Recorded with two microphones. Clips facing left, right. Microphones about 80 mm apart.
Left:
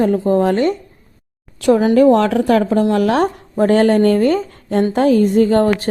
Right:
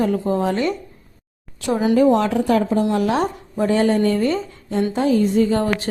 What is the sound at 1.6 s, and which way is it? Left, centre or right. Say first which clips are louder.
A woman's voice: left 5 dB; left.